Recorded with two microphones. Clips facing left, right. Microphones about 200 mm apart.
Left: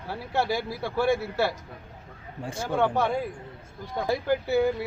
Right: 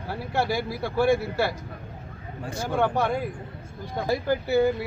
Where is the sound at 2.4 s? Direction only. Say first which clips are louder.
Right 1 dB; 25° left (ahead or behind).